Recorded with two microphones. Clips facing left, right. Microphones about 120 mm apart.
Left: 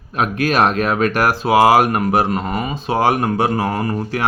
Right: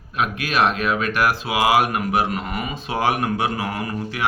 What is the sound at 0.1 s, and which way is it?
Speech, 40° left (ahead or behind).